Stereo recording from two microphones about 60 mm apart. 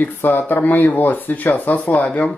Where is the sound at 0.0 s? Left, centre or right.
Left.